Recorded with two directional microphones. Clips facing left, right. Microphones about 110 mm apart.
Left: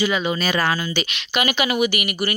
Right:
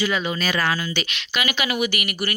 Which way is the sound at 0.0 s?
20° left (ahead or behind).